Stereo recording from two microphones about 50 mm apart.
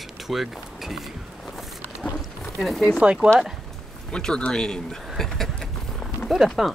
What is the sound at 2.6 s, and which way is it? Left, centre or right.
Speech, centre.